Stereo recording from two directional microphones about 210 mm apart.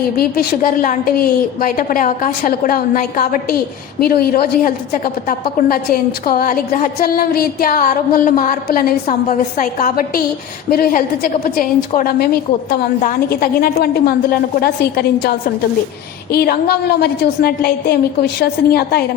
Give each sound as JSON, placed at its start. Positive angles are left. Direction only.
{"t": 0.2, "sound": "a woman's voice", "side_deg": 45}
{"t": 16.3, "sound": "a woman's voice", "side_deg": 45}